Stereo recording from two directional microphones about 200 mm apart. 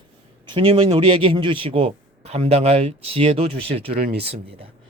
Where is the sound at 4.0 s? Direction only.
55° right (ahead or behind).